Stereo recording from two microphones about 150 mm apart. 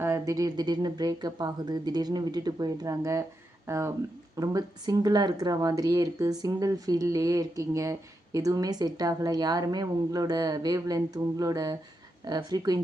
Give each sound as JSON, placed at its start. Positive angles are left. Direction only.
{"t": 0.0, "sound": "speech", "side_deg": -20}